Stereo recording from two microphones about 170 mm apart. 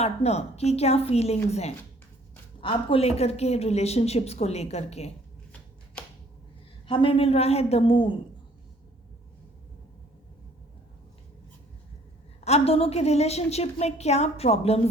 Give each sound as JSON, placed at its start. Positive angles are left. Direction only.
{"t": 0.0, "sound": "speech", "side_deg": 40}
{"t": 5.5, "sound": "shuffling cards", "side_deg": 5}
{"t": 6.8, "sound": "speech", "side_deg": 30}
{"t": 12.5, "sound": "speech", "side_deg": 35}